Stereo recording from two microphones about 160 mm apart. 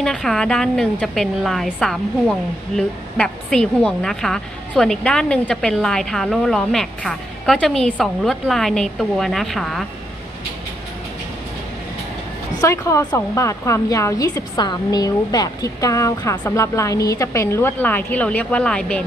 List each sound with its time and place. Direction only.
0.0 s a woman's voice: 5° left (ahead or behind)
12.5 s a woman's voice: 20° left (ahead or behind)